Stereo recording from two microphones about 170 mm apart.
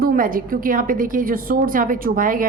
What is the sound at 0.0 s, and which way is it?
A woman's voice, 60° right (ahead or behind).